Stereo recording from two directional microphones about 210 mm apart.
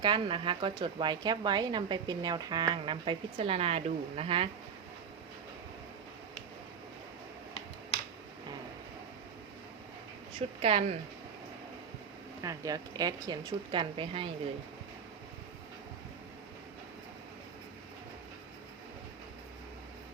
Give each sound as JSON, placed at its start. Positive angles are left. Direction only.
{"t": 0.0, "sound": "a woman's voice", "side_deg": -25}
{"t": 10.6, "sound": "a woman's voice", "side_deg": -25}
{"t": 12.4, "sound": "speech", "side_deg": -15}